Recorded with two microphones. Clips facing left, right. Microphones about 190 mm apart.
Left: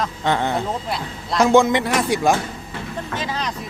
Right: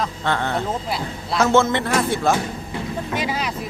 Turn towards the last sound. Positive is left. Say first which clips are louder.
# right 2 dB
turn(degrees=-10)  # may be behind; listen again after turning